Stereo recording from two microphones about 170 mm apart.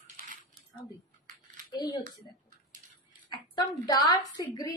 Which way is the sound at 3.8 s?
25° left (ahead or behind).